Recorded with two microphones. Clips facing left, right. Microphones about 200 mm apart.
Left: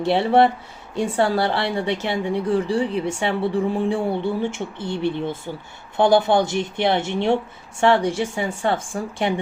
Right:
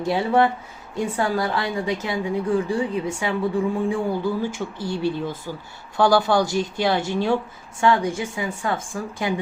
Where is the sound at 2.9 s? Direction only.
75° left (ahead or behind).